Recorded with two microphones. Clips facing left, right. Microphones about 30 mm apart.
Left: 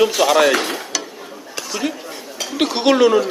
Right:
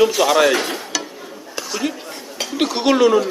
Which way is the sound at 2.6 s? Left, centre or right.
Centre.